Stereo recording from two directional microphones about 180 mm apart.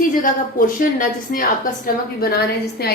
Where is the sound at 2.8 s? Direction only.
60° left (ahead or behind).